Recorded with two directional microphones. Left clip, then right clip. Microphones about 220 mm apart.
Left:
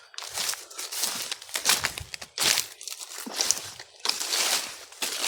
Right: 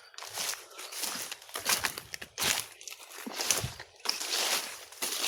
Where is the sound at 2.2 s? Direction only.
30° left (ahead or behind).